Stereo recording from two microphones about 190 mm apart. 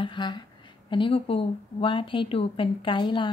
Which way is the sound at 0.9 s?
25° left (ahead or behind).